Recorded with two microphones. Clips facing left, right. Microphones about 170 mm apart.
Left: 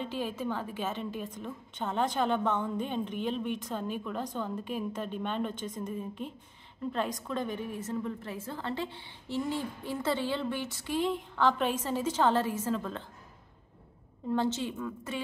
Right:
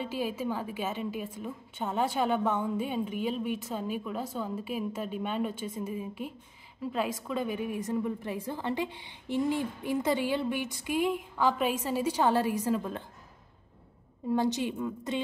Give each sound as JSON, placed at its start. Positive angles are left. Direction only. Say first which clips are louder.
{"t": 0.0, "sound": "a woman's voice", "louder": "right 2 dB", "side_deg": -10}
{"t": 14.3, "sound": "a woman's voice", "louder": "right 2 dB", "side_deg": -15}